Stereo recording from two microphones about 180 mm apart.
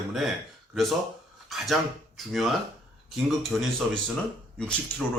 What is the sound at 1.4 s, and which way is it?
Speech, centre (ahead or behind).